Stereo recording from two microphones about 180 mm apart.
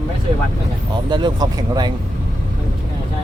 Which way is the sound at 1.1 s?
25° right (ahead or behind).